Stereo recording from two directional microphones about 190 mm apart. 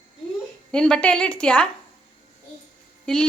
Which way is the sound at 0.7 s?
5° left (ahead or behind).